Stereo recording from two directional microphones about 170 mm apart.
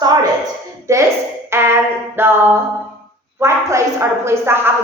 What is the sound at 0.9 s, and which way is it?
Speech, 20° right (ahead or behind).